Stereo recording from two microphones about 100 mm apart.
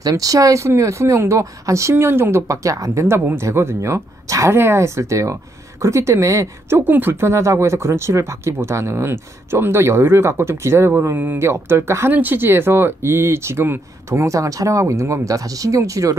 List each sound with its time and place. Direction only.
0.0 s speech: 35° right (ahead or behind)
6.8 s speech: 20° right (ahead or behind)